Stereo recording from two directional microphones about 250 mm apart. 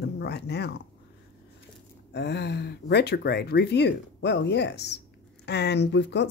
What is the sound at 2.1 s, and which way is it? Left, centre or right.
Speech, left.